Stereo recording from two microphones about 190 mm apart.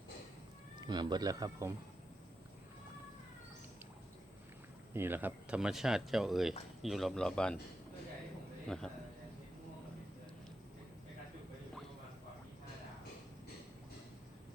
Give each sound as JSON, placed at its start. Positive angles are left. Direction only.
{"t": 0.8, "sound": "speech", "side_deg": -20}
{"t": 4.9, "sound": "speech", "side_deg": -10}
{"t": 8.6, "sound": "a man's voice", "side_deg": 5}